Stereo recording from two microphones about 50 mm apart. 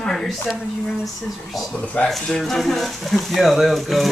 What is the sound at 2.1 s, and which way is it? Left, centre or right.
Speech, centre.